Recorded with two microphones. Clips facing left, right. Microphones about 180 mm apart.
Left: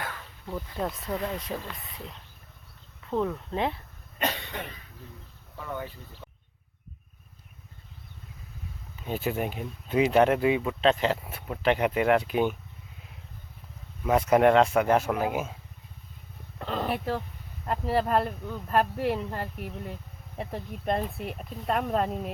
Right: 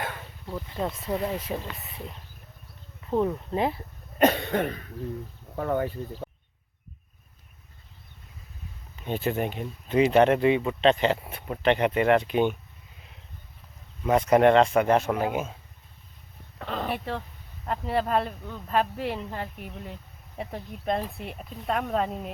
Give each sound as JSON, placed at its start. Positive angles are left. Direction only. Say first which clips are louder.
{"t": 0.4, "sound": "speech", "louder": "right 1 dB", "side_deg": 0}
{"t": 1.1, "sound": "speech", "louder": "right 4 dB", "side_deg": -20}
{"t": 3.1, "sound": "speech", "louder": "right 3 dB", "side_deg": -15}
{"t": 4.2, "sound": "speech", "louder": "right 10 dB", "side_deg": -50}
{"t": 9.0, "sound": "speech", "louder": "right 2 dB", "side_deg": 5}
{"t": 14.0, "sound": "speech", "louder": "right 1 dB", "side_deg": 5}
{"t": 16.6, "sound": "speech", "louder": "left 1 dB", "side_deg": 0}